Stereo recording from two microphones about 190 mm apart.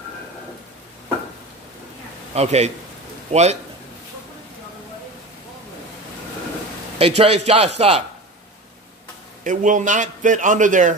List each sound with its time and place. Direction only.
2.3 s speech: 35° right (ahead or behind)
7.0 s speech: 35° right (ahead or behind)
9.4 s a man's voice: 45° right (ahead or behind)